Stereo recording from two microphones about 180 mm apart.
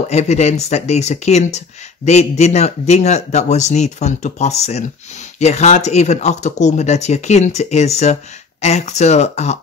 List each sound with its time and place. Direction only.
0.1 s speech: 40° left (ahead or behind)